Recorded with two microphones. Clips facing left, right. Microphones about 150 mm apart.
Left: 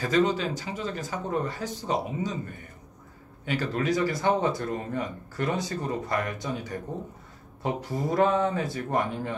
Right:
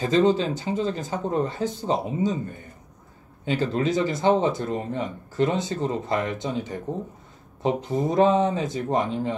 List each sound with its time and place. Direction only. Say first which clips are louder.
0.0 s speech: right 4 dB; 25° right (ahead or behind)
3.4 s speech: right 3 dB; 25° right (ahead or behind)